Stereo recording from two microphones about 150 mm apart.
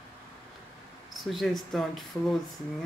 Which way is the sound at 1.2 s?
Centre (ahead or behind).